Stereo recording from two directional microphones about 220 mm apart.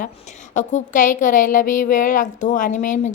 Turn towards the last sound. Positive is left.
turn(degrees=35)  # may be behind; listen again after turning